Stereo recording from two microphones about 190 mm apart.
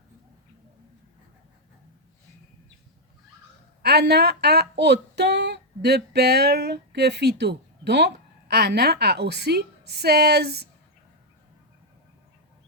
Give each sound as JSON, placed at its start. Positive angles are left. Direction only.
{"t": 3.8, "sound": "a woman's voice", "side_deg": -60}